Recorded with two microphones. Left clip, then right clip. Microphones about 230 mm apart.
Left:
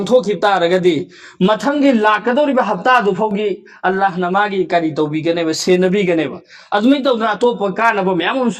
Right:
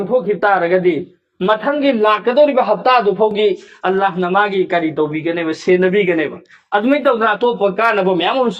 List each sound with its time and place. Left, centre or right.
0.1 s a man's voice: left